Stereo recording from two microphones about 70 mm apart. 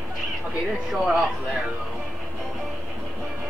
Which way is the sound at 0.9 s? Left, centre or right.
Centre.